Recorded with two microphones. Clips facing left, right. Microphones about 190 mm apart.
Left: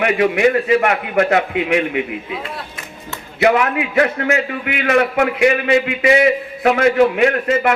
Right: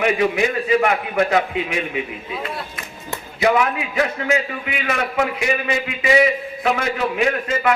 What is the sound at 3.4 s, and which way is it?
A man's voice, 65° left (ahead or behind).